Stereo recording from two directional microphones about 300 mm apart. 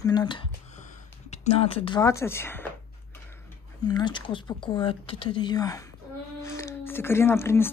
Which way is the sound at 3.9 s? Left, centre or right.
Centre.